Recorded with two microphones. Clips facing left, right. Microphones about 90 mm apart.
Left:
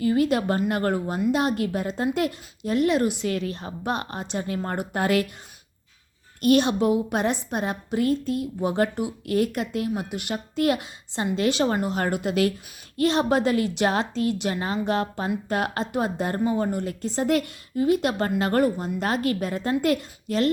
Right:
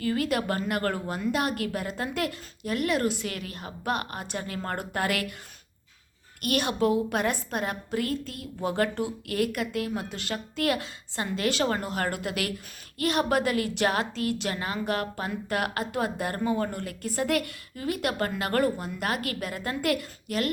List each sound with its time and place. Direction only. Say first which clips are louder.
0.0 s a woman's voice: left 5 dB; 25° left (ahead or behind)
6.4 s a woman's voice: left 6 dB; 25° left (ahead or behind)